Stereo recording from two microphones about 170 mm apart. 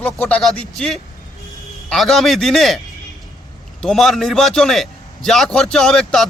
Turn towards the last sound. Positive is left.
turn(degrees=0)  # may be behind; listen again after turning